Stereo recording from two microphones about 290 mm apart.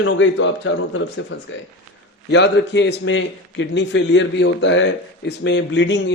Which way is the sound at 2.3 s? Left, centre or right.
Left.